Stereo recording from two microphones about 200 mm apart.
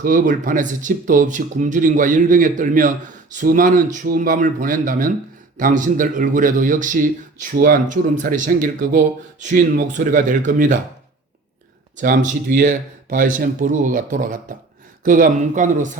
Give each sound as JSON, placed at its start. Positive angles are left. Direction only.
{"t": 0.0, "sound": "speech", "side_deg": -40}
{"t": 11.9, "sound": "speech", "side_deg": -40}